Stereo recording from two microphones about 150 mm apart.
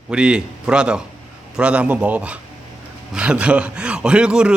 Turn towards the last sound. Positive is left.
turn(degrees=-5)  # may be behind; listen again after turning